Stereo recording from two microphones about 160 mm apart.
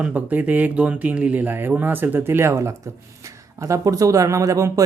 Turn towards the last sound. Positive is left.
turn(degrees=-20)  # may be behind; listen again after turning